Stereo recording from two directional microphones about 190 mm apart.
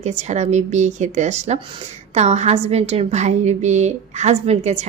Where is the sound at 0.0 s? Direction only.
35° right (ahead or behind).